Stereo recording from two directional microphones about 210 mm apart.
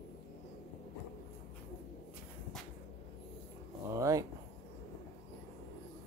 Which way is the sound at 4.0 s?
15° right (ahead or behind).